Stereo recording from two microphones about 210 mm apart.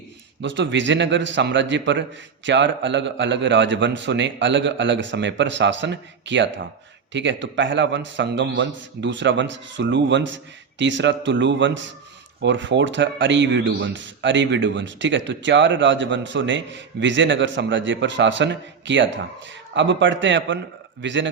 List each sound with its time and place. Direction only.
0.4 s a man's voice: 60° right (ahead or behind)